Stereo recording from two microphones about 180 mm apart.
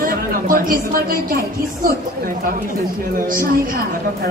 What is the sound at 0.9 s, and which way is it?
Speech, 50° right (ahead or behind).